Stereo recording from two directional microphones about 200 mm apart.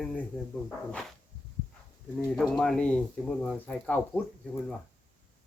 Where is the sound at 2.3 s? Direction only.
Centre (ahead or behind).